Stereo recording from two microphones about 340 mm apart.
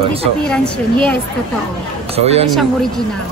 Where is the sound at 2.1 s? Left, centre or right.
Centre.